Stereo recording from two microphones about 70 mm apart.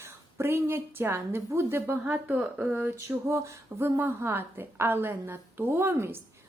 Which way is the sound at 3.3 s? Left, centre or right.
Right.